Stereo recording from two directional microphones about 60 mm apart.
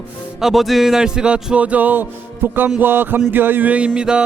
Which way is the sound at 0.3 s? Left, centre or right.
Centre.